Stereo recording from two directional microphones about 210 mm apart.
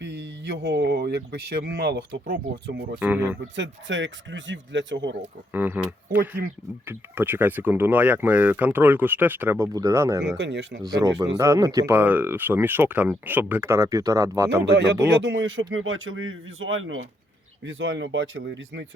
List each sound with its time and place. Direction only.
0.0 s speech: 55° right (ahead or behind)
3.0 s speech: 10° right (ahead or behind)
3.5 s speech: 60° right (ahead or behind)
5.5 s speech: 10° right (ahead or behind)
10.3 s speech: 55° right (ahead or behind)
10.8 s speech: 15° right (ahead or behind)
14.6 s speech: 55° right (ahead or behind)
15.2 s speech: 65° right (ahead or behind)